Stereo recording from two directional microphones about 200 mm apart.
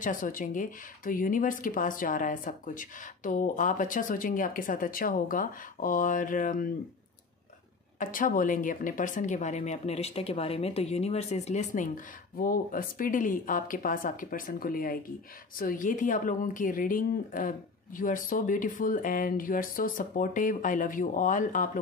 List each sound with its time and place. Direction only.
0.0 s speech: 40° left (ahead or behind)
8.0 s speech: 40° left (ahead or behind)